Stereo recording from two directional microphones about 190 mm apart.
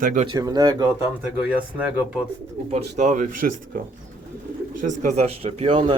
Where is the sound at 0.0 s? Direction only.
45° right (ahead or behind).